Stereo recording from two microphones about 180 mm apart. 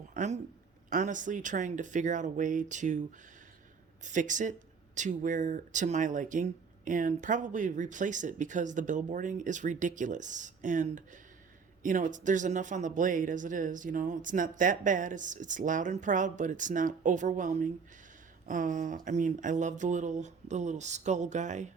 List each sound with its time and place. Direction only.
0.1 s speech: 40° right (ahead or behind)
4.0 s speech: 45° right (ahead or behind)